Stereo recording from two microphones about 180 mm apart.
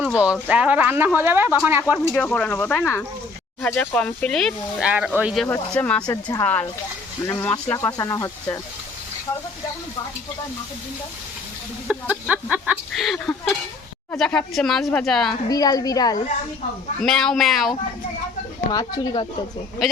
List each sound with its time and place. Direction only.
0.0 s speech: 5° right (ahead or behind)
2.1 s speech: 10° left (ahead or behind)
5.5 s speech: 10° left (ahead or behind)
11.9 s speech: 5° right (ahead or behind)
15.4 s a woman's voice: 20° left (ahead or behind)
17.0 s speech: centre (ahead or behind)
18.7 s a woman's voice: 20° left (ahead or behind)